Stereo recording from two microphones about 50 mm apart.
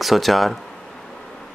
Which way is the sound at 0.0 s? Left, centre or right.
Centre.